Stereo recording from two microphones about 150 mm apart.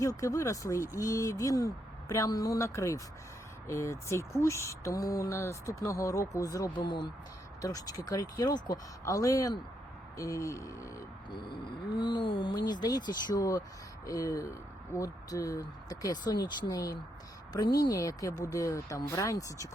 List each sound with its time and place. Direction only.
0.0 s speech: 20° left (ahead or behind)
11.9 s a sound: 30° left (ahead or behind)
14.1 s speech: 20° left (ahead or behind)